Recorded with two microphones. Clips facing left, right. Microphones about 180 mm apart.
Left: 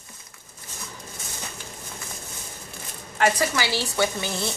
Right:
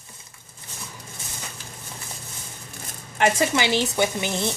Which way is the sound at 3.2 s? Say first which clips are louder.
Right 2 dB; 20° right (ahead or behind).